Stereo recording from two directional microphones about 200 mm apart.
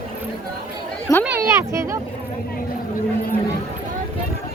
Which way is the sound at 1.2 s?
10° right (ahead or behind).